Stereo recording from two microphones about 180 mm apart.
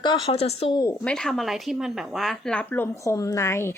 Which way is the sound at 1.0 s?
5° left (ahead or behind).